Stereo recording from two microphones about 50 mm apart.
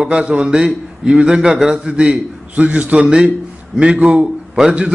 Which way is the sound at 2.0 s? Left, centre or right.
Right.